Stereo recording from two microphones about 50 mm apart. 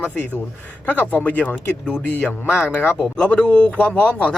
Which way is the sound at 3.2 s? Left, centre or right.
Centre.